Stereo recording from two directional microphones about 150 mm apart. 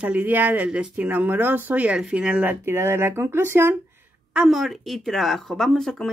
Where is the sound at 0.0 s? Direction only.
10° right (ahead or behind).